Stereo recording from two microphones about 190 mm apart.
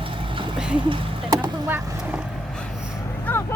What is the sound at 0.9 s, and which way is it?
Speech, 25° right (ahead or behind).